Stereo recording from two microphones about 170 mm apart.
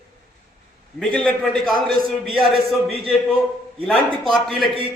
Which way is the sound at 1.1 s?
5° left (ahead or behind).